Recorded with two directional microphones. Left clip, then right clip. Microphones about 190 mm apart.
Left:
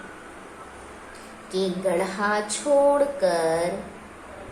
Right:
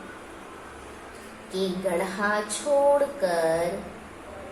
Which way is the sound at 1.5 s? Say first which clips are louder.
Left 3 dB; 25° left (ahead or behind).